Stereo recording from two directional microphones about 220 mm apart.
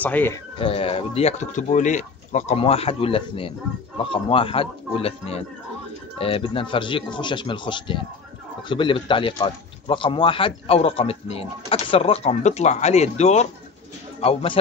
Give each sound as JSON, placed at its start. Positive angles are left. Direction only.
{"t": 0.0, "sound": "speech", "side_deg": 10}
{"t": 0.6, "sound": "a man's voice", "side_deg": 25}